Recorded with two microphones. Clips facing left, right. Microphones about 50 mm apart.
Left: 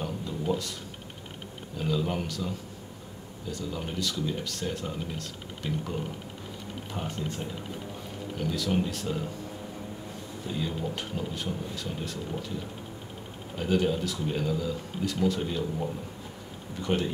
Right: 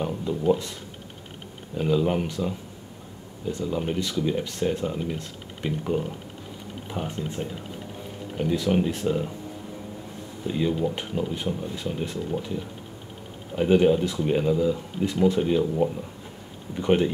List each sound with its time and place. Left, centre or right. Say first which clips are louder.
0.0 s speech: right 7 dB; right
1.8 s speech: right 6 dB; right
10.4 s speech: right 8 dB; right
13.6 s speech: right 8 dB; right
16.8 s speech: right 7 dB; right